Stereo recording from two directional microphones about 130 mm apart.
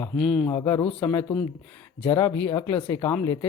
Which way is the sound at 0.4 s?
20° left (ahead or behind).